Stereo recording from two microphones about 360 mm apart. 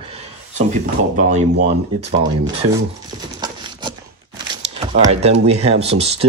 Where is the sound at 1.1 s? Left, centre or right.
Right.